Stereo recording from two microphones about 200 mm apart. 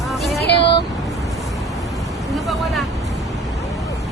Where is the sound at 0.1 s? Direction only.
Centre (ahead or behind).